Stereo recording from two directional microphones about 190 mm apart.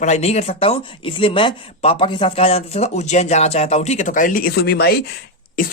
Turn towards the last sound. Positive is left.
turn(degrees=50)  # may be behind; listen again after turning